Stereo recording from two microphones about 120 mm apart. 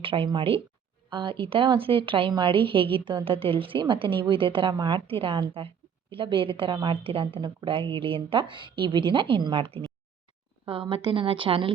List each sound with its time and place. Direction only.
0.0 s a woman's voice: 50° right (ahead or behind)